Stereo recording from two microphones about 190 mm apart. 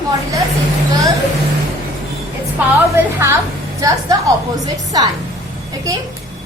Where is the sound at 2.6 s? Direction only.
10° right (ahead or behind).